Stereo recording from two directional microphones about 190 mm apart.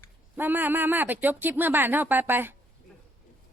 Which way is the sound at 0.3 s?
10° right (ahead or behind).